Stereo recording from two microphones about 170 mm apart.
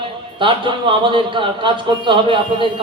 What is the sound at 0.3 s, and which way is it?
Speech, 30° right (ahead or behind).